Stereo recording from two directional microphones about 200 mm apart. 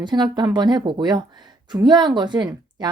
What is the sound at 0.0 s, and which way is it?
A woman's voice, 20° right (ahead or behind).